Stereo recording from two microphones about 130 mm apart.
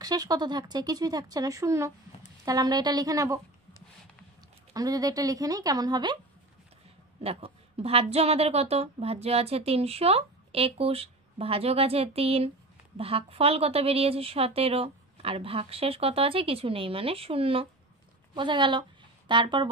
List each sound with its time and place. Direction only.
0.0 s speech: 30° right (ahead or behind)
4.7 s speech: 30° right (ahead or behind)
7.2 s a woman's voice: 50° right (ahead or behind)